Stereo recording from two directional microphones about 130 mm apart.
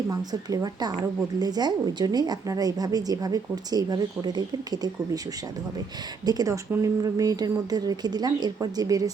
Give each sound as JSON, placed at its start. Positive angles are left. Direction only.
{"t": 0.1, "sound": "a woman's voice", "side_deg": -30}
{"t": 6.2, "sound": "speech", "side_deg": -30}